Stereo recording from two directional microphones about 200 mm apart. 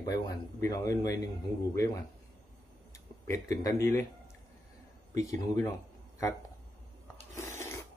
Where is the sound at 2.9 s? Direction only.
15° left (ahead or behind).